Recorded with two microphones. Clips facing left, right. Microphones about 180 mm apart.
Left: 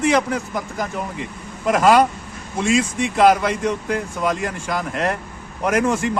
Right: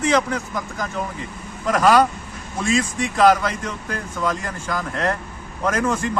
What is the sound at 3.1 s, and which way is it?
A man's voice, 20° left (ahead or behind).